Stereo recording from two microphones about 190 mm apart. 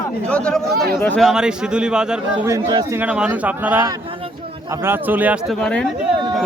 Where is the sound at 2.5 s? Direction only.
20° right (ahead or behind).